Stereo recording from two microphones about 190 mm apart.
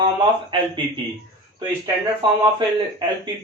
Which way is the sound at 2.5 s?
25° right (ahead or behind).